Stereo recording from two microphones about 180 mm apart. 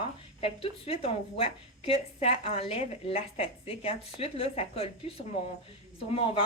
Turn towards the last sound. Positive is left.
turn(degrees=30)  # may be behind; listen again after turning